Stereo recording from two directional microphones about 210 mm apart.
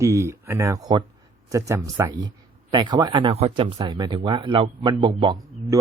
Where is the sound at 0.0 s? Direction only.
15° right (ahead or behind).